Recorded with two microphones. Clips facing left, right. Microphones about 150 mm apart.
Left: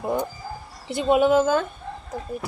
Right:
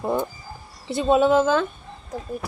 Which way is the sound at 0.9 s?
15° left (ahead or behind).